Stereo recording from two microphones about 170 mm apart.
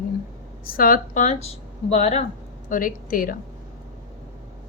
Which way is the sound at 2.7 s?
55° left (ahead or behind).